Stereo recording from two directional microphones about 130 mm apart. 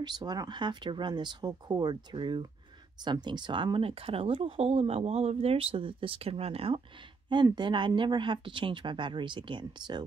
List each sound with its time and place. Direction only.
0.0 s speech: 35° right (ahead or behind); by 6.8 s 50° right (ahead or behind)
7.4 s speech: 35° right (ahead or behind)